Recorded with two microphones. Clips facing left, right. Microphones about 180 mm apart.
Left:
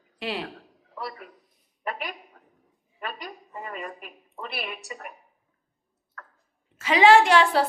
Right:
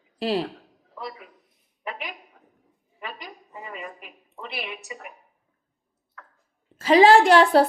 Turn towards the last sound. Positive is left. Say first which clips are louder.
# right 3 dB
turn(degrees=-35)  # may be behind; listen again after turning